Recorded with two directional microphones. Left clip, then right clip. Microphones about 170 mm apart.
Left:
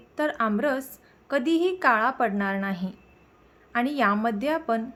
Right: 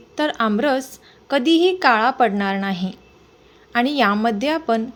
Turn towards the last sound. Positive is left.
turn(degrees=-10)  # may be behind; listen again after turning